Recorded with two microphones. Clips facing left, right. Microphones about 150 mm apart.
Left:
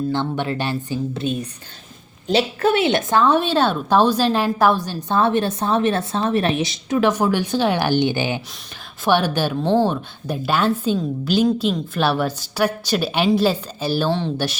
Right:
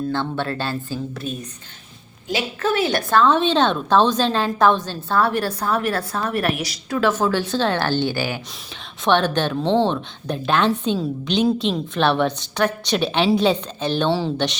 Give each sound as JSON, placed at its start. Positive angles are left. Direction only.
{"t": 0.1, "sound": "a woman's voice", "side_deg": 15}
{"t": 2.2, "sound": "a woman's voice", "side_deg": 35}
{"t": 9.0, "sound": "a woman's voice", "side_deg": 10}